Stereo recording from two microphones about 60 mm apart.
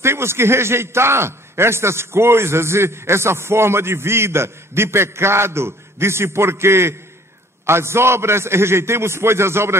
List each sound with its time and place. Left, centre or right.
0.0 s a man's voice: right